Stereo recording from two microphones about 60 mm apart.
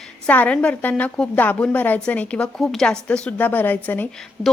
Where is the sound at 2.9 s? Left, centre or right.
Centre.